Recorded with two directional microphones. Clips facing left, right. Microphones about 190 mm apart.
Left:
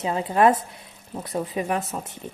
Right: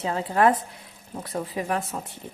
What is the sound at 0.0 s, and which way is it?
A woman's voice, 20° left (ahead or behind).